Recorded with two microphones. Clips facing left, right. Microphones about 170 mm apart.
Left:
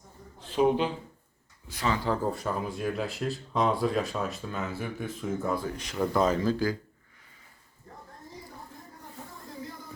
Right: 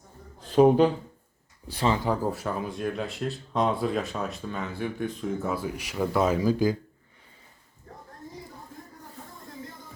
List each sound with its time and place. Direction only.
0.3 s a sound: 45° right (ahead or behind)
1.6 s speech: 30° right (ahead or behind)
2.0 s speech: 5° right (ahead or behind)